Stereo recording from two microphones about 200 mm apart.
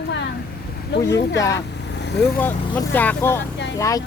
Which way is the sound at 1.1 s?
60° left (ahead or behind).